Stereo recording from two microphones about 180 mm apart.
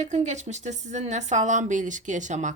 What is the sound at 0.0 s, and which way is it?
Speech, 40° right (ahead or behind).